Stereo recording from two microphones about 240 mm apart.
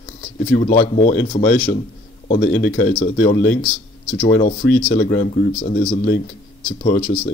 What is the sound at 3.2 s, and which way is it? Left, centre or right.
Speech, left.